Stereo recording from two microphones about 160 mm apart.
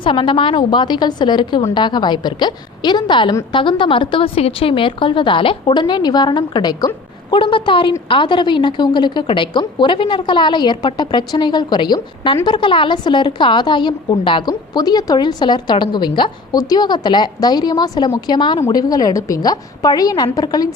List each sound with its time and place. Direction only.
0.0 s a woman's voice: 30° left (ahead or behind)